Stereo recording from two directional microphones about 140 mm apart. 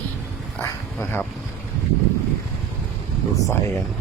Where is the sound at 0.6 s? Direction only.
15° left (ahead or behind).